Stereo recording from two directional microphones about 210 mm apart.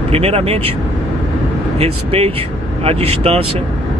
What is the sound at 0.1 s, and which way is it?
Speech, 30° right (ahead or behind).